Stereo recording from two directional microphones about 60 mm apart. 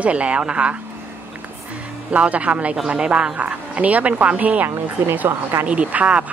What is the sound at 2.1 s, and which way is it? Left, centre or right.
Speech, right.